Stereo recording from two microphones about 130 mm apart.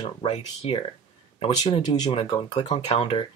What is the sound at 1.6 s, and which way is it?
Speech, 30° left (ahead or behind).